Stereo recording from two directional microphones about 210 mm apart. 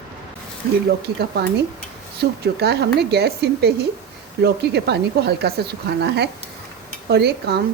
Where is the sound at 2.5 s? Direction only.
50° right (ahead or behind).